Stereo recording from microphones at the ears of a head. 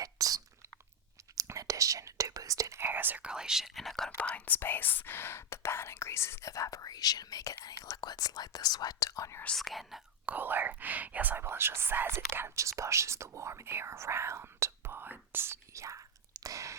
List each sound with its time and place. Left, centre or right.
0.0 s a sound: right
1.4 s whispering: right
3.3 s speech: centre
4.4 s speech: left
10.3 s speech: right